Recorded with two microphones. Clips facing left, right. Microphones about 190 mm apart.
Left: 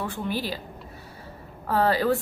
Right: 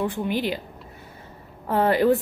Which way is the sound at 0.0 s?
15° right (ahead or behind).